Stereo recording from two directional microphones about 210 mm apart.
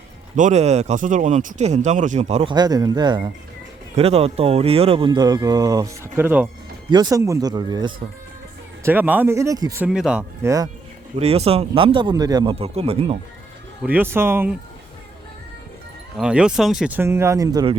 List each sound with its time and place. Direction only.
0.3 s speech: 35° right (ahead or behind)
8.8 s speech: 10° right (ahead or behind)
11.2 s speech: 30° right (ahead or behind)
13.8 s speech: 10° right (ahead or behind)
16.1 s speech: 5° right (ahead or behind)